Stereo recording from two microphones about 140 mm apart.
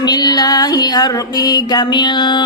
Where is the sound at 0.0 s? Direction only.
30° left (ahead or behind).